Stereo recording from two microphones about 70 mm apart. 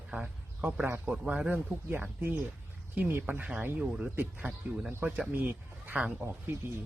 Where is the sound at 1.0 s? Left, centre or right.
Centre.